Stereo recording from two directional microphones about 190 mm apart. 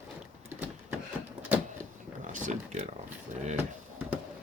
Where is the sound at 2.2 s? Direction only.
40° right (ahead or behind).